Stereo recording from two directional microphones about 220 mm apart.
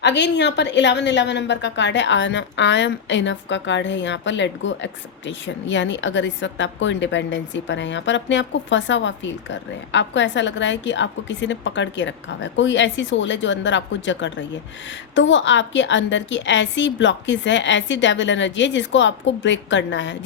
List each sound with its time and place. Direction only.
0.0 s a woman's voice: 55° left (ahead or behind)